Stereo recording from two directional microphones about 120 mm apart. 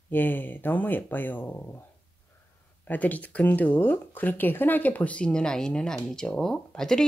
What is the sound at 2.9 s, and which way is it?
Speech, 15° left (ahead or behind).